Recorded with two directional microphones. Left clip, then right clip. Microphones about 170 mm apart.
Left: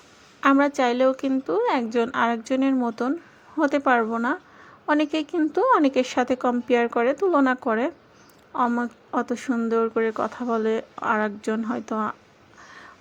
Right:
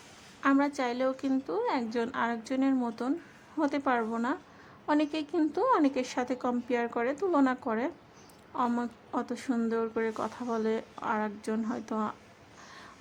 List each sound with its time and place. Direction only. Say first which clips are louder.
0.4 s speech: left 8 dB; 20° left (ahead or behind)